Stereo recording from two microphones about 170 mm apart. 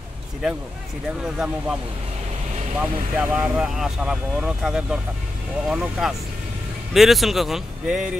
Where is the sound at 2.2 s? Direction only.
40° right (ahead or behind).